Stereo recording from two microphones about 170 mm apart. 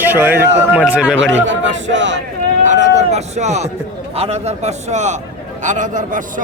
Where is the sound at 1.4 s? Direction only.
90° right.